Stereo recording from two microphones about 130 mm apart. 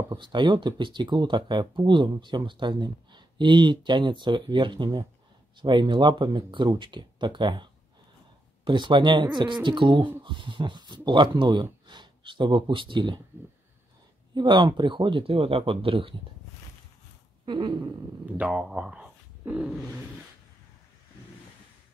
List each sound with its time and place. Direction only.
0.1 s speech: 35° right (ahead or behind)
14.3 s speech: 35° right (ahead or behind)
17.5 s speech: 35° right (ahead or behind)
18.4 s speech: 5° right (ahead or behind)